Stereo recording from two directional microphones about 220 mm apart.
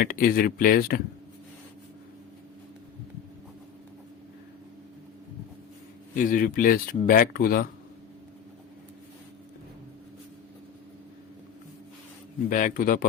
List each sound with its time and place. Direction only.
0.0 s speech: 40° left (ahead or behind)
6.1 s speech: 40° left (ahead or behind)
12.5 s speech: 35° left (ahead or behind)